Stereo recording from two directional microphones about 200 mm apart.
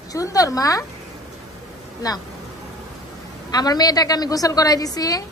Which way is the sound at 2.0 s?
20° left (ahead or behind).